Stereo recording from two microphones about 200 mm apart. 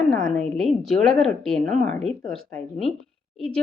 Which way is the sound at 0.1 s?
Centre (ahead or behind).